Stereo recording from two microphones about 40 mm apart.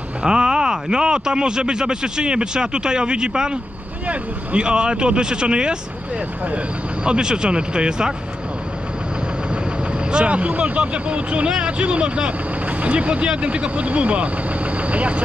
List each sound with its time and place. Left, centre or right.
0.2 s speech: centre
4.1 s speech: right
4.6 s speech: right
7.1 s speech: right
10.1 s speech: right